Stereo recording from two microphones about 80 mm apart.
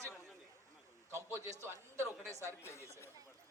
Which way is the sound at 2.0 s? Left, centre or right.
Left.